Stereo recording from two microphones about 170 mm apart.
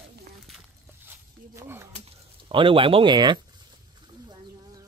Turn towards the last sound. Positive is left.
turn(degrees=-25)  # may be behind; listen again after turning